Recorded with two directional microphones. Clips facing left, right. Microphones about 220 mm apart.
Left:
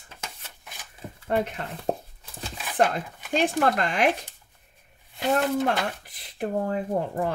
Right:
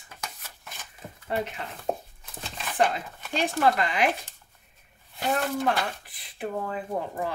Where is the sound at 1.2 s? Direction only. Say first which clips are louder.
Left 4 dB; 50° left (ahead or behind).